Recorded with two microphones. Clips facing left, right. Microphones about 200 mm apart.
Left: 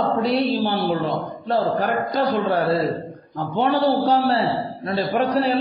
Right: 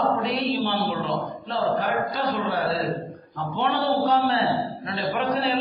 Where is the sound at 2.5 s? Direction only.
45° left (ahead or behind).